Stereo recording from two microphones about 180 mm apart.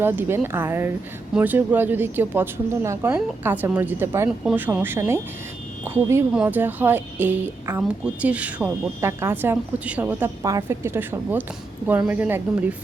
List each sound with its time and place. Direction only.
0.0 s a woman's voice: 10° right (ahead or behind)